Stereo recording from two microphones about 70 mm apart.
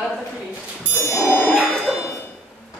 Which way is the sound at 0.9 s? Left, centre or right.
Left.